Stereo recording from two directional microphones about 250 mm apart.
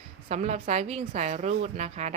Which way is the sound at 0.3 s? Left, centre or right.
Right.